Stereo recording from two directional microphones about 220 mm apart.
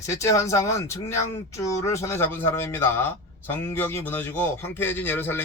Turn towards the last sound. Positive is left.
turn(degrees=10)  # may be behind; listen again after turning